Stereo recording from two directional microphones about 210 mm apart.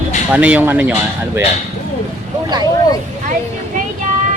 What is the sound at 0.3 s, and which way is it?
Speech, 5° right (ahead or behind).